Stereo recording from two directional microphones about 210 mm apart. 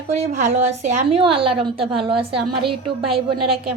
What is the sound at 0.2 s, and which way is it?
A woman's voice, 35° right (ahead or behind).